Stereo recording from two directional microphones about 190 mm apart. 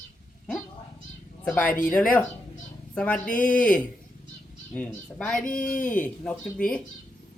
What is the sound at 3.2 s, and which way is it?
Speech, 45° left (ahead or behind).